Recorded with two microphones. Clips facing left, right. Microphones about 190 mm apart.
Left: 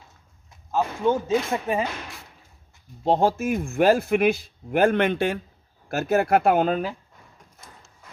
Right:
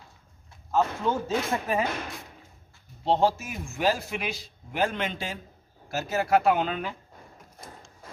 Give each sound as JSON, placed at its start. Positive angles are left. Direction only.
{"t": 0.7, "sound": "speech", "side_deg": 20}
{"t": 3.1, "sound": "a man's voice", "side_deg": 50}